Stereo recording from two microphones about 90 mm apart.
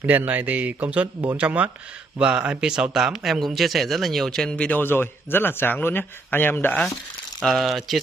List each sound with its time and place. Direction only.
0.0 s speech: 20° right (ahead or behind); by 6.9 s 20° left (ahead or behind)
7.3 s speech: centre (ahead or behind)